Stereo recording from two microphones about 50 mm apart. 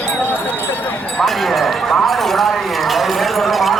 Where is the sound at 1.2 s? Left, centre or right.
Centre.